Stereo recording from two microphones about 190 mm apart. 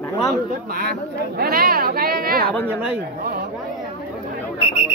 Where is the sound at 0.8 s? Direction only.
55° right (ahead or behind).